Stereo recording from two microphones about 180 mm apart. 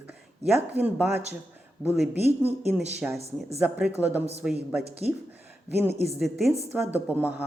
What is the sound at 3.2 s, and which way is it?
Speech, 35° right (ahead or behind).